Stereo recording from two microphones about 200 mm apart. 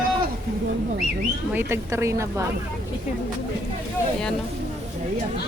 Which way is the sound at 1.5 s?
15° right (ahead or behind).